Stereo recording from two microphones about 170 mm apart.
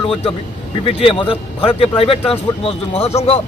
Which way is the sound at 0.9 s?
30° left (ahead or behind).